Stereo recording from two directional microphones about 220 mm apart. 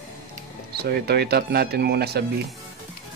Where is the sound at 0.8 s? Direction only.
45° right (ahead or behind).